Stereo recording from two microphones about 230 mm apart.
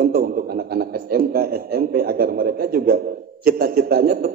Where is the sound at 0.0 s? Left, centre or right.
Right.